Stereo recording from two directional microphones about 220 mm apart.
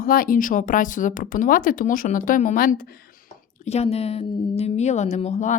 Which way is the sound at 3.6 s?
30° left (ahead or behind).